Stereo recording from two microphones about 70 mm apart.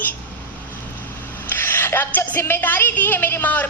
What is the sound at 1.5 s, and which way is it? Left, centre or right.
Speech, left.